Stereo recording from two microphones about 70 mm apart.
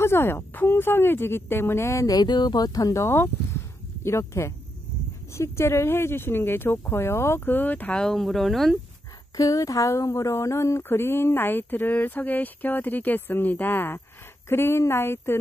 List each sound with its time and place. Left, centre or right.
0.0 s speech: left
2.1 s speech: left
8.0 s speech: centre
9.4 s speech: left